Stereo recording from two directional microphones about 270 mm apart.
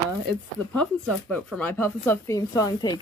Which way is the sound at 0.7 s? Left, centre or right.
Centre.